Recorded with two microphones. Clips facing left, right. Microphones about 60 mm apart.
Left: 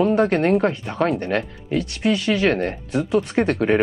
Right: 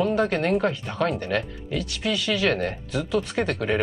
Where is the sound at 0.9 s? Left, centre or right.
Centre.